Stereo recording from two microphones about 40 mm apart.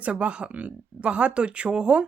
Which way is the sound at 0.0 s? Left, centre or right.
Right.